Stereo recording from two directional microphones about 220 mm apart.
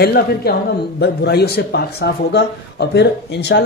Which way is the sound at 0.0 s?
45° left (ahead or behind).